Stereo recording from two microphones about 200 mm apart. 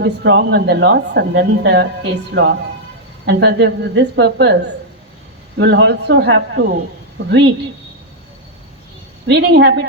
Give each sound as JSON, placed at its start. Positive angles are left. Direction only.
{"t": 0.0, "sound": "a woman's voice", "side_deg": -60}
{"t": 3.2, "sound": "a woman's voice", "side_deg": -60}
{"t": 5.5, "sound": "a woman's voice", "side_deg": -60}
{"t": 9.2, "sound": "a woman's voice", "side_deg": -60}